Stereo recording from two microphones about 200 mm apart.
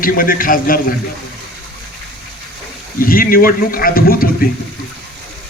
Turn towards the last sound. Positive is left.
turn(degrees=45)  # may be behind; listen again after turning